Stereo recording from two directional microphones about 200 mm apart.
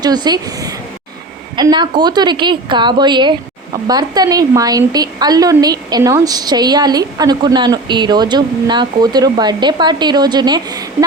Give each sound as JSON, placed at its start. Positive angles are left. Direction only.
{"t": 0.0, "sound": "a woman's voice", "side_deg": -20}